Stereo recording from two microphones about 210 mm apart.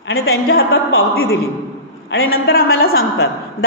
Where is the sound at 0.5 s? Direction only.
75° left (ahead or behind).